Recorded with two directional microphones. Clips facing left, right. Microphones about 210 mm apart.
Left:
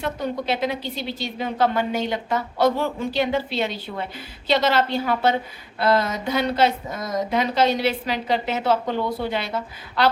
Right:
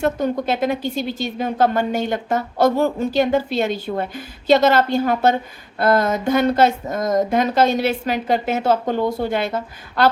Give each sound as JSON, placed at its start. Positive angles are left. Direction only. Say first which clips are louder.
{"t": 0.0, "sound": "speech", "louder": "right 6 dB", "side_deg": -50}